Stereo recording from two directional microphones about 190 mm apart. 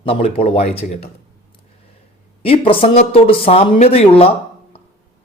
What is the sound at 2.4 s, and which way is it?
A man's voice, 30° left (ahead or behind).